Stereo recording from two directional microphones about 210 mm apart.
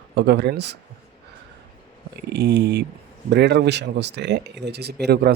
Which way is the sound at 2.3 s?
50° right (ahead or behind).